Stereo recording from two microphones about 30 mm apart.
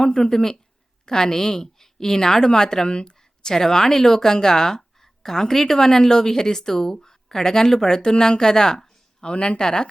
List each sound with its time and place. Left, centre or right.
0.0 s speech: left
0.3 s a woman's voice: centre
9.2 s speech: left
9.6 s speech: left